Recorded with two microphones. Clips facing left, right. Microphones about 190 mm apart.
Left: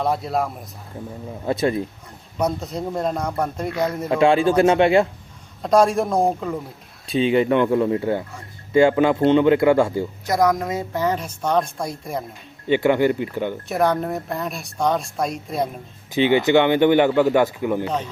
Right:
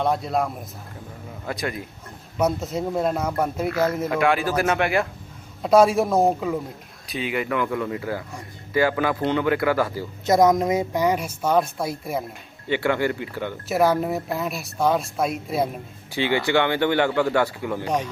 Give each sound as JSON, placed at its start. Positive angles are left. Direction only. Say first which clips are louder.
{"t": 0.0, "sound": "speech", "louder": "left 1 dB", "side_deg": 0}
{"t": 1.5, "sound": "a man's voice", "louder": "left 8 dB", "side_deg": 25}
{"t": 2.4, "sound": "speech", "louder": "right 1 dB", "side_deg": -5}
{"t": 4.1, "sound": "a man's voice", "louder": "left 5 dB", "side_deg": 25}
{"t": 5.6, "sound": "speech", "louder": "right 1 dB", "side_deg": -5}
{"t": 7.1, "sound": "a man's voice", "louder": "left 8 dB", "side_deg": 25}
{"t": 10.2, "sound": "speech", "louder": "right 3 dB", "side_deg": -20}
{"t": 12.6, "sound": "a man's voice", "louder": "left 5 dB", "side_deg": 20}
{"t": 13.7, "sound": "speech", "louder": "right 2 dB", "side_deg": -5}
{"t": 16.1, "sound": "a man's voice", "louder": "left 5 dB", "side_deg": 20}
{"t": 17.8, "sound": "speech", "louder": "right 1 dB", "side_deg": -15}